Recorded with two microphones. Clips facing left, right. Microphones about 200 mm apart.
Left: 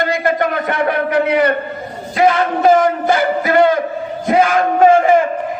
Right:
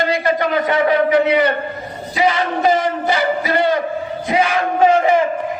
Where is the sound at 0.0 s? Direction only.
50° left (ahead or behind).